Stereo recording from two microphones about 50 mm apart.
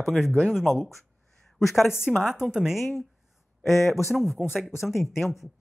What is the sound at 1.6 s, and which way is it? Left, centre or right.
Speech, centre.